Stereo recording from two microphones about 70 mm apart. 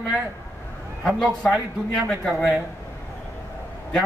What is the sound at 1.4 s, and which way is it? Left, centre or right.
A man's voice, centre.